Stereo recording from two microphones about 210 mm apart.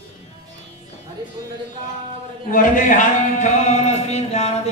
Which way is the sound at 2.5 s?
40° left (ahead or behind).